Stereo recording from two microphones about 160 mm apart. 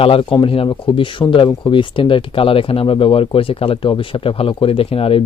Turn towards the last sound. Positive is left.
turn(degrees=35)  # may be behind; listen again after turning